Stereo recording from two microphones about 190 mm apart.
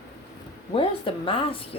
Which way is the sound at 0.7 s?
30° left (ahead or behind).